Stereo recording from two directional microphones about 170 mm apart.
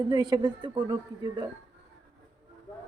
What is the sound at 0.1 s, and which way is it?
A man's voice, 25° right (ahead or behind).